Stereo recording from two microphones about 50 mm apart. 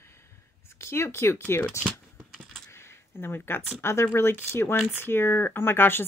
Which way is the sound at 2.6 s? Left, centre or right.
Left.